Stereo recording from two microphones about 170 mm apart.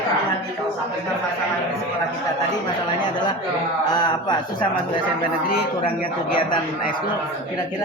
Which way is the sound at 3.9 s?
25° left (ahead or behind).